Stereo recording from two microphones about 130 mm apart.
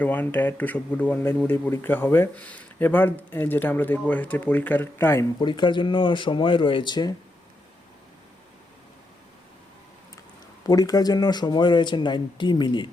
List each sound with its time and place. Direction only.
0.0 s speech: 15° left (ahead or behind)
5.4 s speech: 35° left (ahead or behind)
10.7 s speech: 30° left (ahead or behind)